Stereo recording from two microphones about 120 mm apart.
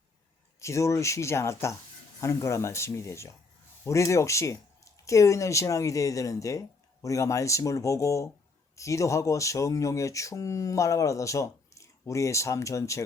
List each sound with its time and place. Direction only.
0.6 s speech: 25° left (ahead or behind)